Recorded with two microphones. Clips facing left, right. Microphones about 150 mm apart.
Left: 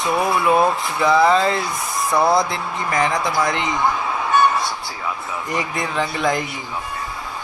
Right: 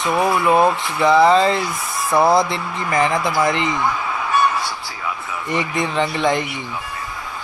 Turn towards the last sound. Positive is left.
turn(degrees=0)  # may be behind; listen again after turning